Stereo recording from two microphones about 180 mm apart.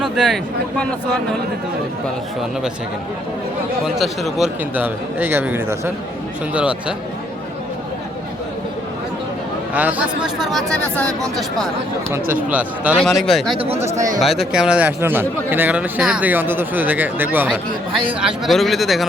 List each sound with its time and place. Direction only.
0.0 s speech: centre (ahead or behind)
3.8 s speech: centre (ahead or behind)
9.7 s speech: 10° right (ahead or behind)
12.5 s speech: 10° right (ahead or behind)
13.6 s speech: 35° right (ahead or behind)
14.2 s speech: centre (ahead or behind)